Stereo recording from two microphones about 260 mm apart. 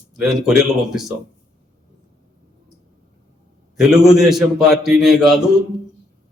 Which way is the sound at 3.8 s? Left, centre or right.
Centre.